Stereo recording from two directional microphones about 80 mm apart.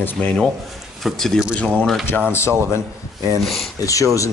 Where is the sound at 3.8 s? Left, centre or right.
Left.